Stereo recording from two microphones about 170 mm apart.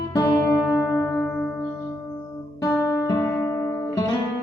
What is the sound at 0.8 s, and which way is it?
Music, 10° left (ahead or behind).